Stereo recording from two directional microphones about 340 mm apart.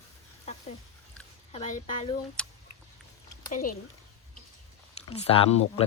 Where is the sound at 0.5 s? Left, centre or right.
Centre.